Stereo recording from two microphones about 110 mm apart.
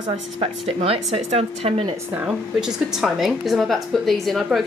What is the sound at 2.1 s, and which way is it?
A woman's voice, 10° right (ahead or behind).